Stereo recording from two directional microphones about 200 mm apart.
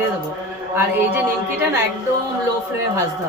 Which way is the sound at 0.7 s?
10° right (ahead or behind).